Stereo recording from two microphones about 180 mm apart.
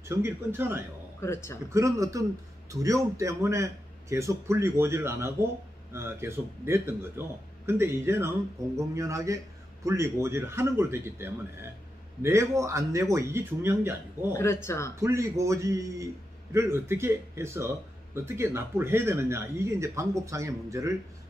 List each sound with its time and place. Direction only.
0.0 s a man's voice: 15° right (ahead or behind)
1.2 s speech: 15° left (ahead or behind)
1.7 s a man's voice: 15° right (ahead or behind)
14.3 s speech: 15° left (ahead or behind)
15.0 s a man's voice: 15° right (ahead or behind)